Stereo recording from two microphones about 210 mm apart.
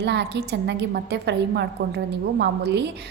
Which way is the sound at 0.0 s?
55° right (ahead or behind).